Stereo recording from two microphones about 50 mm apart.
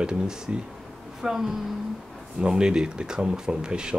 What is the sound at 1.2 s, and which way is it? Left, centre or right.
Speech, centre.